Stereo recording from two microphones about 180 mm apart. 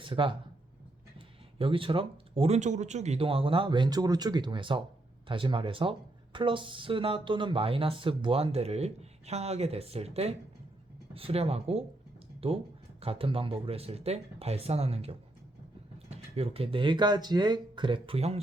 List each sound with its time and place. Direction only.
0.0 s speech: 30° right (ahead or behind)
1.5 s speech: 30° right (ahead or behind)